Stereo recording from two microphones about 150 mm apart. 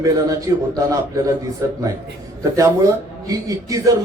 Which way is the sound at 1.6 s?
20° right (ahead or behind).